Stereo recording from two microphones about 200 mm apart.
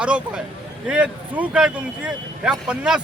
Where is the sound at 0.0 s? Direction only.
5° right (ahead or behind).